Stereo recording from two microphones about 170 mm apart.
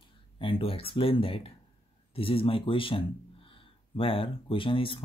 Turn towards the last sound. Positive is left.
turn(degrees=30)  # may be behind; listen again after turning